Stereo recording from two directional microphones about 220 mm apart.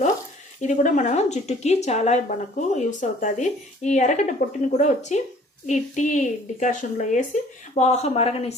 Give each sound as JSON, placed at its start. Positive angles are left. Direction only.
{"t": 0.6, "sound": "speech", "side_deg": 35}